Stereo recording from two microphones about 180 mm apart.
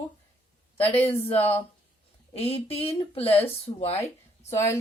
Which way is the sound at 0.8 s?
10° left (ahead or behind).